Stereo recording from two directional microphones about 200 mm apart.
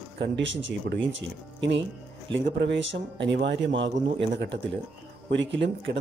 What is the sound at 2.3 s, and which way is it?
Speech, 65° right (ahead or behind).